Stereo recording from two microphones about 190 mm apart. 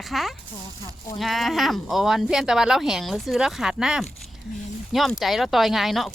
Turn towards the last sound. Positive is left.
turn(degrees=0)  # may be behind; listen again after turning